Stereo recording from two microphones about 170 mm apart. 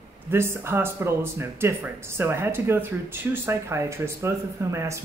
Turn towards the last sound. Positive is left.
turn(degrees=-15)  # may be behind; listen again after turning